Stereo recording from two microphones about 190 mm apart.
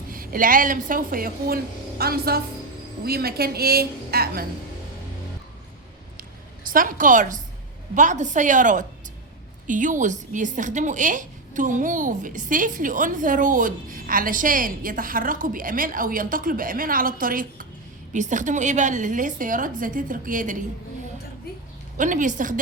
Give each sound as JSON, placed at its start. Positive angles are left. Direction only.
{"t": 0.1, "sound": "a woman's voice", "side_deg": -45}
{"t": 6.7, "sound": "a woman's voice", "side_deg": -45}
{"t": 21.9, "sound": "a woman's voice", "side_deg": -40}